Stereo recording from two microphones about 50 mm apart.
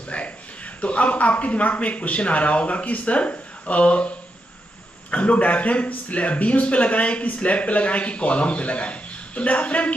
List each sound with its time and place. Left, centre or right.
0.1 s a sound: left
0.7 s a man's voice: left
5.1 s a man's voice: left